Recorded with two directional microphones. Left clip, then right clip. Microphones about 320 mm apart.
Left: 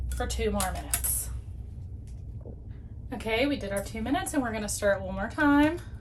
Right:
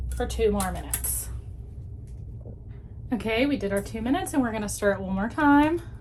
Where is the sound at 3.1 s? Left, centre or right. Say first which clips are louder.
Right 3 dB; right.